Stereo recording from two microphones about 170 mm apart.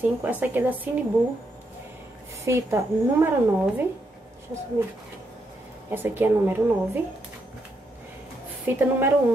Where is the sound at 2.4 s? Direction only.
15° right (ahead or behind).